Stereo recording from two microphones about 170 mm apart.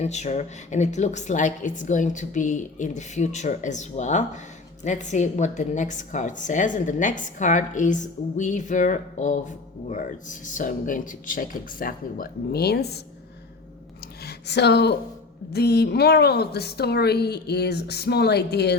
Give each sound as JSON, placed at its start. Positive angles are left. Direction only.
{"t": 0.0, "sound": "a woman's voice", "side_deg": 40}
{"t": 14.3, "sound": "a woman's voice", "side_deg": 80}